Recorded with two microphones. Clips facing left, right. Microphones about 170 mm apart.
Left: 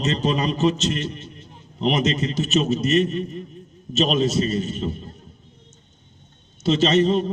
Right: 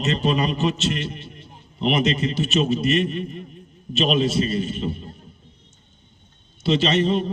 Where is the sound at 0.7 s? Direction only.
40° left (ahead or behind).